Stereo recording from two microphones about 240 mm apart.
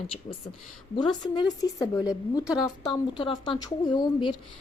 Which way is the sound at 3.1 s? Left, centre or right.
Centre.